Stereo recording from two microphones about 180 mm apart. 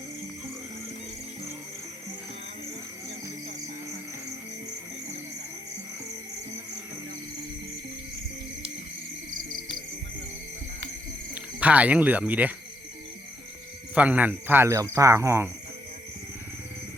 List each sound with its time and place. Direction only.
11.6 s speech: 10° right (ahead or behind)
13.9 s speech: 10° right (ahead or behind)